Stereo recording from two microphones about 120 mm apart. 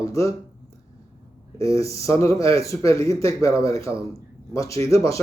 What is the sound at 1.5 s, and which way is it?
A man's voice, 25° left (ahead or behind).